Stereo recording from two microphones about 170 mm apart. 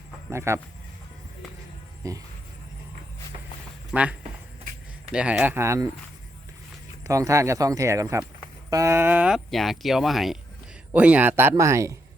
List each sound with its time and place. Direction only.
0.3 s speech: 15° right (ahead or behind)
2.0 s speech: 20° right (ahead or behind)
3.9 s speech: 10° right (ahead or behind)
5.1 s speech: 10° right (ahead or behind)
7.0 s speech: 20° right (ahead or behind)